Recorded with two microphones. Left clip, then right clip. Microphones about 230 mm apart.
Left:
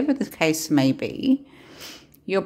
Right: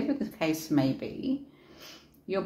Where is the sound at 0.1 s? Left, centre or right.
Left.